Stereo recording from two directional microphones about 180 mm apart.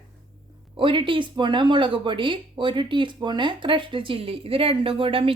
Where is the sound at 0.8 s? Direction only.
30° right (ahead or behind).